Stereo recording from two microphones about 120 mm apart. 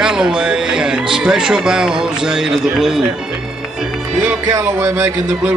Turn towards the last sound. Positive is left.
turn(degrees=-25)  # may be behind; listen again after turning